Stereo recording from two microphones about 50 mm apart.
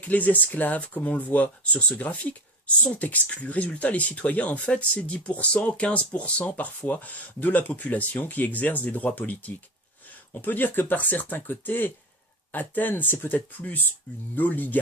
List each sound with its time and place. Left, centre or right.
0.0 s speech: left